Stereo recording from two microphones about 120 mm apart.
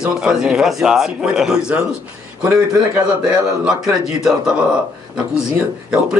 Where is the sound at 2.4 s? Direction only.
20° right (ahead or behind).